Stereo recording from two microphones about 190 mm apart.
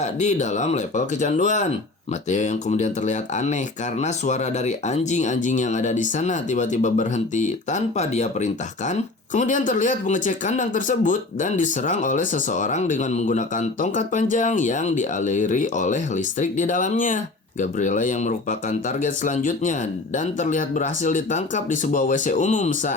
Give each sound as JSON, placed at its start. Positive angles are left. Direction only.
{"t": 0.0, "sound": "speech", "side_deg": 40}